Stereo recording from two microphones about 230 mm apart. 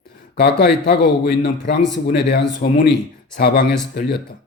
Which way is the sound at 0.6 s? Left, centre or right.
Left.